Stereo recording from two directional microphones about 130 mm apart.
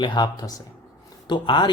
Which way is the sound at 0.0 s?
35° left (ahead or behind).